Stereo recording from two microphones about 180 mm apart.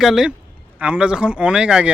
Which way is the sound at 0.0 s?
Centre (ahead or behind).